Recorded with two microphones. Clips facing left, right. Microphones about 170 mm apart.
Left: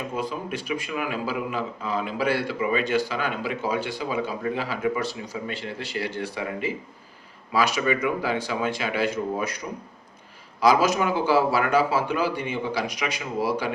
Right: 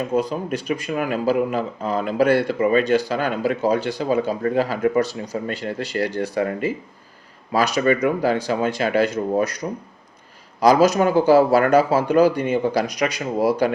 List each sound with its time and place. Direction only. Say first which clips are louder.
0.1 s speech: right 7 dB; 40° right (ahead or behind)
10.6 s speech: right 5 dB; 40° right (ahead or behind)